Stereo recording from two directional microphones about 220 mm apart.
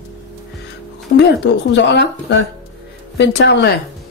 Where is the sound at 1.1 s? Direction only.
40° left (ahead or behind).